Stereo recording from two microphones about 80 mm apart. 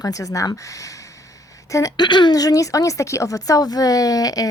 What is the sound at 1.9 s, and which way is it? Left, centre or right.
Speech, left.